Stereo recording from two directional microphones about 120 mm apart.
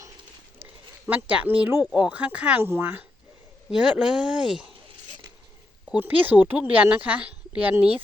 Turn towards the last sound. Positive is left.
turn(degrees=-10)  # may be behind; listen again after turning